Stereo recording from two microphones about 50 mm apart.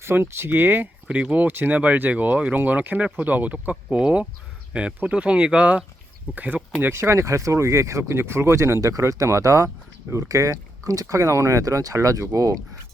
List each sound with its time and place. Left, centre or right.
0.0 s speech: right
1.0 s speech: right
1.5 s speech: right
1.7 s speech: right
3.8 s speech: centre
6.8 s speech: right
8.1 s speech: right